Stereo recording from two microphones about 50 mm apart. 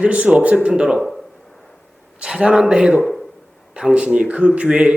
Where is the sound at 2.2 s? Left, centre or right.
Centre.